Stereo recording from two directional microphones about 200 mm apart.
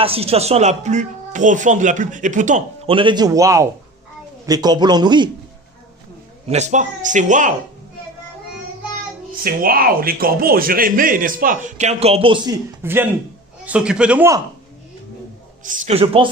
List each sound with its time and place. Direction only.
0.0 s speech: 30° right (ahead or behind)
2.9 s a man's voice: 25° right (ahead or behind)
6.5 s speech: 35° right (ahead or behind)
9.4 s a man's voice: 45° right (ahead or behind); by 12.5 s 25° right (ahead or behind)
12.8 s a man's voice: 10° right (ahead or behind)
15.6 s speech: 40° right (ahead or behind)